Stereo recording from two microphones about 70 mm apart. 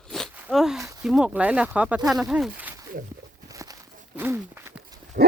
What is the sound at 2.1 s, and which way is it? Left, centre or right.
Speech, centre.